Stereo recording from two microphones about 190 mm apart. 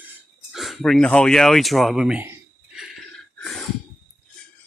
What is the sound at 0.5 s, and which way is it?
Speech, centre (ahead or behind).